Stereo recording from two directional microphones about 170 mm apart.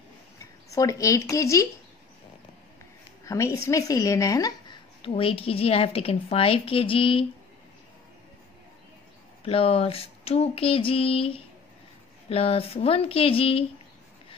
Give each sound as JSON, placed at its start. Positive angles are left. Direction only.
{"t": 0.7, "sound": "speech", "side_deg": 20}
{"t": 3.3, "sound": "a woman's voice", "side_deg": 15}
{"t": 9.4, "sound": "a woman's voice", "side_deg": 35}